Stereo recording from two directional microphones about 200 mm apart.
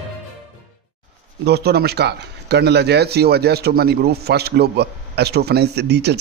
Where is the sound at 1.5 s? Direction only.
55° right (ahead or behind).